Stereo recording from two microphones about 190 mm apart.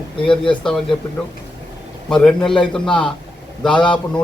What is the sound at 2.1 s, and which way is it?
A man's voice, centre (ahead or behind).